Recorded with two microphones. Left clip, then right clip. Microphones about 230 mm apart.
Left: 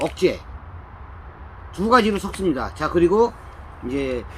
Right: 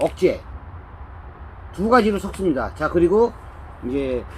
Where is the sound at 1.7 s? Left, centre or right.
Centre.